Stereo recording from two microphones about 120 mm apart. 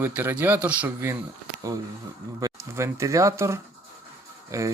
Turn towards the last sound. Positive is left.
turn(degrees=-25)  # may be behind; listen again after turning